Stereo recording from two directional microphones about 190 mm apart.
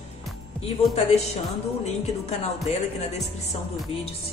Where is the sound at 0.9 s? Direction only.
35° left (ahead or behind).